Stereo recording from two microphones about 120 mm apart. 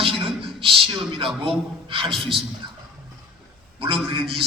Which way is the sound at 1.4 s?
45° right (ahead or behind).